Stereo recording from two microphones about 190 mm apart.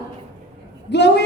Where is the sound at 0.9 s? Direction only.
65° left (ahead or behind).